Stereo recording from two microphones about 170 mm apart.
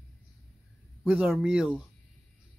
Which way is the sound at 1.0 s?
5° right (ahead or behind).